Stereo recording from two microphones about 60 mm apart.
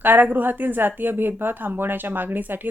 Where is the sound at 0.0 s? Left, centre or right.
Right.